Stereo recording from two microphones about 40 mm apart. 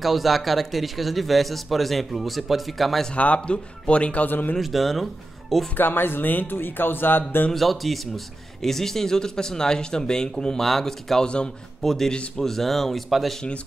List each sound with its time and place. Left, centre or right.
0.0 s speech: centre
3.3 s speech: left
4.3 s speech: left
4.6 s speech: centre
5.8 s speech: left
7.5 s speech: centre; by 11.5 s left
11.8 s speech: centre